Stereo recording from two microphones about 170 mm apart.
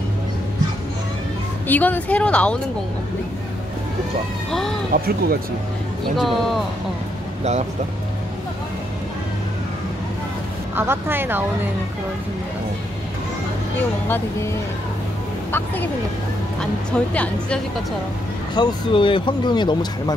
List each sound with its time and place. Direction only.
1.7 s speech: 10° left (ahead or behind)
4.5 s speech: 5° left (ahead or behind)
4.9 s speech: 60° right (ahead or behind)
6.1 s speech: centre (ahead or behind)
10.8 s speech: 10° right (ahead or behind)
14.0 s speech: 10° left (ahead or behind)
15.5 s speech: 10° left (ahead or behind)
17.1 s speech: 5° left (ahead or behind)
18.5 s speech: 25° left (ahead or behind)